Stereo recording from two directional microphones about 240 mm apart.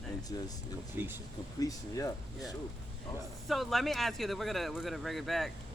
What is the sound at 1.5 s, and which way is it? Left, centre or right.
Speech, centre.